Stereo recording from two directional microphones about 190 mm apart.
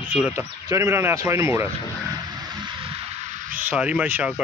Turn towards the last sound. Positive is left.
turn(degrees=-10)  # may be behind; listen again after turning